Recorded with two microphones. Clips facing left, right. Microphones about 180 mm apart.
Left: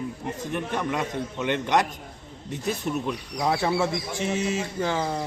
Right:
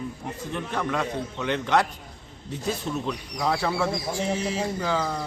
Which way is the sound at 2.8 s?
15° left (ahead or behind).